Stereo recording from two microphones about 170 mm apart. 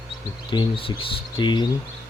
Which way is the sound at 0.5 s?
30° left (ahead or behind).